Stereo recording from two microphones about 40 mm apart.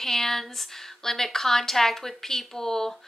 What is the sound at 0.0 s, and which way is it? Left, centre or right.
A woman's voice, centre.